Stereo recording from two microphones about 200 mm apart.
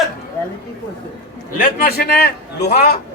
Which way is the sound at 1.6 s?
50° left (ahead or behind).